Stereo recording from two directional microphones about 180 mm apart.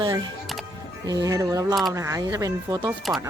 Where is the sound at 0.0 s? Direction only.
25° right (ahead or behind).